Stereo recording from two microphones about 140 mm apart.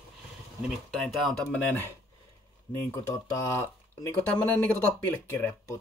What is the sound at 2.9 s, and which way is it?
Speech, 20° left (ahead or behind).